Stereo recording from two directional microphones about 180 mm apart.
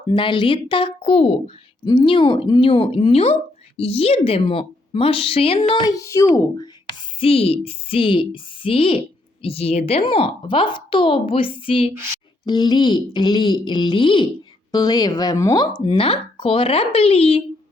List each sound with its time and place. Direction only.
0.1 s a woman's voice: 25° left (ahead or behind)
5.9 s a child's voice: 15° left (ahead or behind)
7.2 s a woman's voice: 35° left (ahead or behind)